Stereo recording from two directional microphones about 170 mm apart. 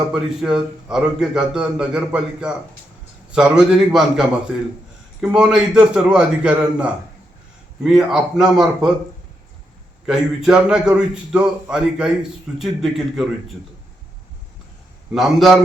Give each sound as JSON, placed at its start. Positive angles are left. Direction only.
{"t": 0.1, "sound": "a man's voice", "side_deg": -5}
{"t": 10.1, "sound": "a man's voice", "side_deg": -5}
{"t": 15.1, "sound": "a man's voice", "side_deg": 0}